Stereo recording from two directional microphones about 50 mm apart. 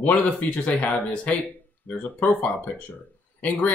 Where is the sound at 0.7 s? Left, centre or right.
Left.